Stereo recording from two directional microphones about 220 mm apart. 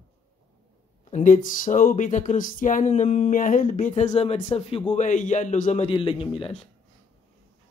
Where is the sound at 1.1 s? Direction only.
35° left (ahead or behind).